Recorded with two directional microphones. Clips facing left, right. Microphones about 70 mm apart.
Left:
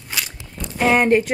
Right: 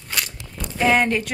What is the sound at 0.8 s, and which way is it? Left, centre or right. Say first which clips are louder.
Speech: left 3 dB; left.